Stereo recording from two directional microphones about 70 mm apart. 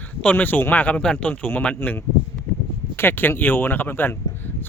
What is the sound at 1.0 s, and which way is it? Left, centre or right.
Speech, centre.